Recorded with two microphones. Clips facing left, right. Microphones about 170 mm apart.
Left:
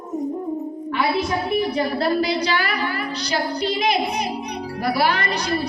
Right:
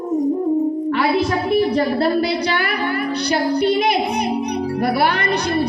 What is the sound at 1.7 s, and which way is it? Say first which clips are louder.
A woman's voice: right 3 dB; 55° right (ahead or behind).